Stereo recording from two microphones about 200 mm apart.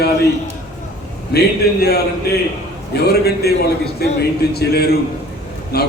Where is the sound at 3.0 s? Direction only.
55° left (ahead or behind).